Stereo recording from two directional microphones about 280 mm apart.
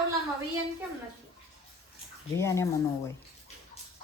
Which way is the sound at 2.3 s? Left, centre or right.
Centre.